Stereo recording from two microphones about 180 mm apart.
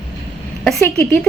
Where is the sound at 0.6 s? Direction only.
10° left (ahead or behind).